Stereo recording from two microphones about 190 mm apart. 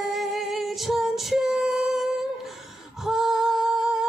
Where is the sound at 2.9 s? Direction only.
Centre (ahead or behind).